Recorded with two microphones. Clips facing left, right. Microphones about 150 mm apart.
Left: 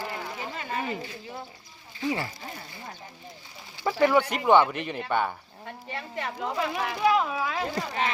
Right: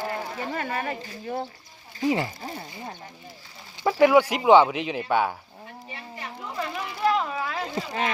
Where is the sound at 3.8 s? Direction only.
10° right (ahead or behind).